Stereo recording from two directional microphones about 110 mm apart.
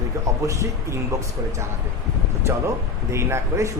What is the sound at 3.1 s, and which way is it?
Speech, 25° right (ahead or behind).